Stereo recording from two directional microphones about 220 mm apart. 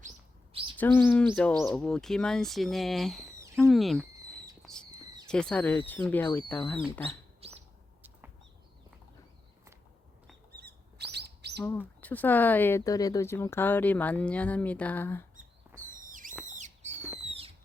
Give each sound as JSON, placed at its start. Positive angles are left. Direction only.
{"t": 0.8, "sound": "speech", "side_deg": 10}
{"t": 4.6, "sound": "a sound", "side_deg": 0}
{"t": 5.3, "sound": "speech", "side_deg": 5}
{"t": 7.4, "sound": "bird", "side_deg": -25}
{"t": 10.6, "sound": "bird", "side_deg": -50}
{"t": 11.9, "sound": "speech", "side_deg": 10}
{"t": 16.4, "sound": "a sound", "side_deg": -35}
{"t": 17.2, "sound": "fireworks", "side_deg": -25}